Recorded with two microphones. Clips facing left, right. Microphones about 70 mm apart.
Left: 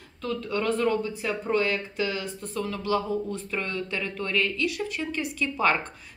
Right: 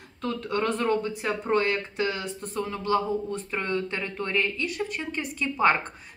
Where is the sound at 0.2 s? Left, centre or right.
Right.